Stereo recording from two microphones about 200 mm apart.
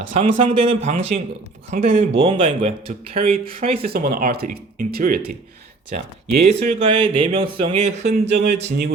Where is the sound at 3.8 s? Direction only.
50° right (ahead or behind).